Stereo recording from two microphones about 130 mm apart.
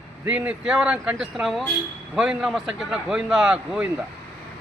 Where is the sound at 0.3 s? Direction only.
10° right (ahead or behind).